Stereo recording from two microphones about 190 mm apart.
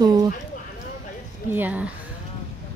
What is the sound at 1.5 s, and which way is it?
Speech, 10° right (ahead or behind).